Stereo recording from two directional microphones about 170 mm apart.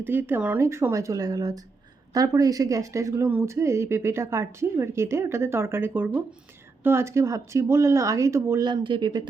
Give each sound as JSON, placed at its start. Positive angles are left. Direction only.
{"t": 0.0, "sound": "speech", "side_deg": -10}